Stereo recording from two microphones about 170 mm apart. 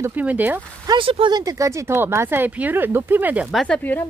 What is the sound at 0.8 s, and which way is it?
Speech, 30° right (ahead or behind).